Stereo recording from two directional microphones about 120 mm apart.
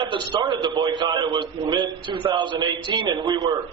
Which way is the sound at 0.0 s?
40° right (ahead or behind).